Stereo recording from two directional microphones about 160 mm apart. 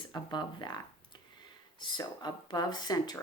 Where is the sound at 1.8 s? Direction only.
25° left (ahead or behind).